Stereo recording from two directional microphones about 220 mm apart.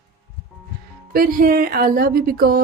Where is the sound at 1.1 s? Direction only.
40° right (ahead or behind).